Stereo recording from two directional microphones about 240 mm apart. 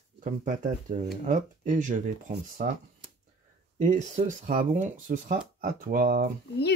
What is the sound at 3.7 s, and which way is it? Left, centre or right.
Speech, right.